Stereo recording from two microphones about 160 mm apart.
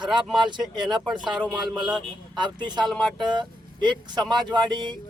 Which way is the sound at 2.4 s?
25° right (ahead or behind).